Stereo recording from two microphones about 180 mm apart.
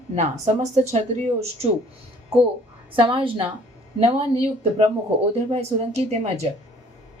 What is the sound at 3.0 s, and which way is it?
Speech, 30° right (ahead or behind).